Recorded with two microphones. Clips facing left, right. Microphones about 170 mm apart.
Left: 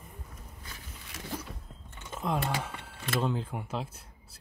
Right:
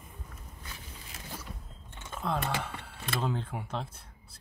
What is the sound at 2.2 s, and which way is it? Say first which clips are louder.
Speech: left 1 dB; 15° left (ahead or behind).